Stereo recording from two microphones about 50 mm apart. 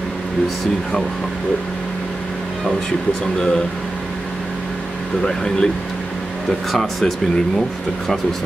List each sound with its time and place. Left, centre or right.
3.3 s speech: centre
5.2 s speech: centre
6.7 s speech: centre